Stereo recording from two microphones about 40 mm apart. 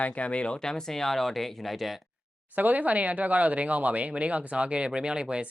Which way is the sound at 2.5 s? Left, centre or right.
Right.